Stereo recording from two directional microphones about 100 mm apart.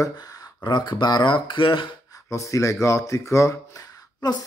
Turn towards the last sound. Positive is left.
turn(degrees=40)  # may be behind; listen again after turning